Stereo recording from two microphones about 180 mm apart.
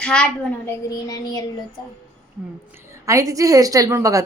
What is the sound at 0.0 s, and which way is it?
Speech, 5° left (ahead or behind).